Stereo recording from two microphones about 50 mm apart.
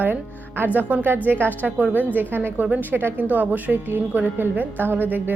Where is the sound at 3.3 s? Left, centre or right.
Right.